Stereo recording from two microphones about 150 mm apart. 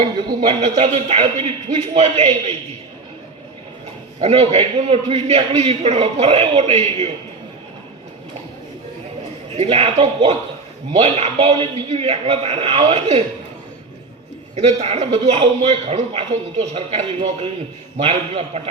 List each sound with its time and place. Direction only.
0.4 s a man's voice: 45° right (ahead or behind)
4.2 s a man's voice: 40° right (ahead or behind)
9.6 s a man's voice: 40° right (ahead or behind)
14.5 s a man's voice: 45° right (ahead or behind)